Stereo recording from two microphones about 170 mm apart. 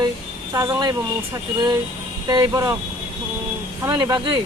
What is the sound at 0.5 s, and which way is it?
Speech, 20° right (ahead or behind).